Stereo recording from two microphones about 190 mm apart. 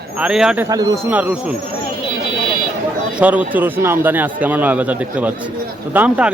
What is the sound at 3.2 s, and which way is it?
A man's voice, 10° right (ahead or behind).